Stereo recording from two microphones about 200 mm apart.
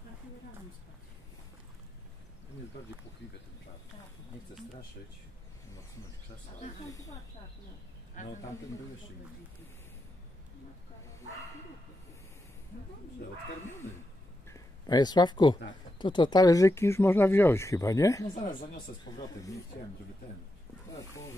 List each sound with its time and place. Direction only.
8.2 s speech: 40° left (ahead or behind)
14.5 s speech: 20° left (ahead or behind)
18.3 s speech: 40° left (ahead or behind)
19.0 s speech: 20° left (ahead or behind)
20.9 s speech: 15° left (ahead or behind)